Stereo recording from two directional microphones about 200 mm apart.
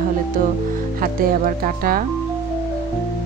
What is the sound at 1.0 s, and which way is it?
Speech, 45° right (ahead or behind).